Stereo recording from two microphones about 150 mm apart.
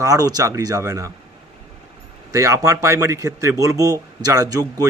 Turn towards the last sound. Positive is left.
turn(degrees=-25)  # may be behind; listen again after turning